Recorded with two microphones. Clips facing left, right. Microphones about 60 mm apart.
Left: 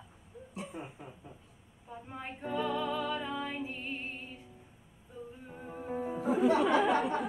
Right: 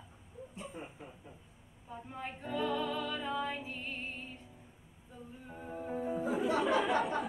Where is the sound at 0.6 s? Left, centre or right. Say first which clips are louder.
Left 4 dB; left.